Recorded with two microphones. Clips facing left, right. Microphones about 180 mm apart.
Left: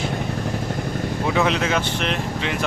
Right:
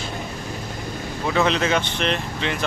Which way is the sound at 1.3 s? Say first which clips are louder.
Right 2 dB; 10° left (ahead or behind).